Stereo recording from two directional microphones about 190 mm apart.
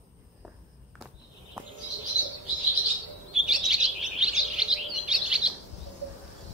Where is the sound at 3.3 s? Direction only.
5° right (ahead or behind).